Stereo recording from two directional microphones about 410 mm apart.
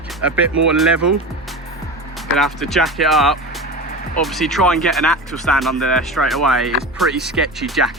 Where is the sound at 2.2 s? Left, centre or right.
Centre.